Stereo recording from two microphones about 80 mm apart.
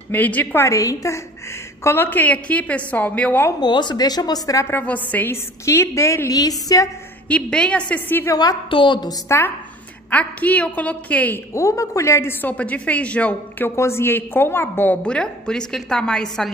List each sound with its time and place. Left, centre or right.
0.1 s a woman's voice: left
0.7 s a woman's voice: left
1.8 s a woman's voice: left
3.6 s speech: left
4.6 s a woman's voice: left
5.3 s a woman's voice: left
7.2 s a woman's voice: centre
8.3 s a woman's voice: left
8.6 s a woman's voice: left
10.1 s a woman's voice: centre
11.5 s a woman's voice: left; by 13.7 s centre
13.7 s a woman's voice: left
15.0 s a woman's voice: centre